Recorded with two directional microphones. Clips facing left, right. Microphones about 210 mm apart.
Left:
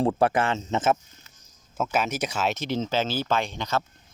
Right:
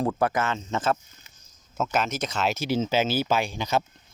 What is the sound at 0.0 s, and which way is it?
Speech, 30° left (ahead or behind).